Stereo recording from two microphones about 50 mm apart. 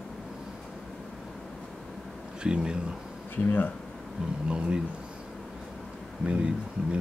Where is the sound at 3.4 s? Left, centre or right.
Left.